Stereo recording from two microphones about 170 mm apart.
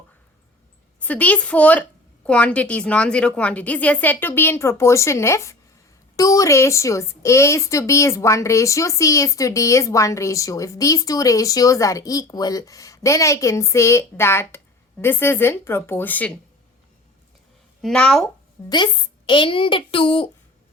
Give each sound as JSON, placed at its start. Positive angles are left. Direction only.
{"t": 0.9, "sound": "a woman's voice", "side_deg": 10}
{"t": 17.8, "sound": "speech", "side_deg": 5}
{"t": 18.7, "sound": "a woman's voice", "side_deg": 30}